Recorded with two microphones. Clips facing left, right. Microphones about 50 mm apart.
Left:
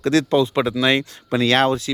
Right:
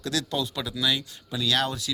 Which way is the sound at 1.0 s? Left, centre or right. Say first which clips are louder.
Left 11 dB; left.